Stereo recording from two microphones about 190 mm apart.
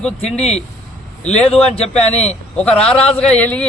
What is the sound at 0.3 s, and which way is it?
Speech, centre (ahead or behind).